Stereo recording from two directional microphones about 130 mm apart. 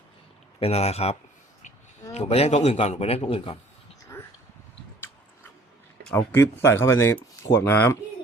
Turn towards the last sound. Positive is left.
turn(degrees=15)  # may be behind; listen again after turning